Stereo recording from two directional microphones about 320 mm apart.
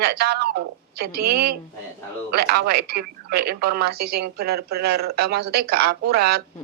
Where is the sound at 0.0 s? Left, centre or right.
Right.